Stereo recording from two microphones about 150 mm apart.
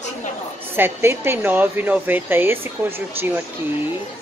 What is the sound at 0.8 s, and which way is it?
Speech, 15° right (ahead or behind).